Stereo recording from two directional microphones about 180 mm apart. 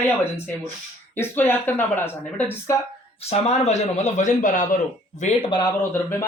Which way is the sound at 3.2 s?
35° left (ahead or behind).